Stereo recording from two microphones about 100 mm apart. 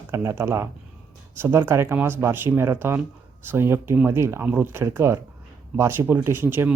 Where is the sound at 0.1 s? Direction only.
25° right (ahead or behind).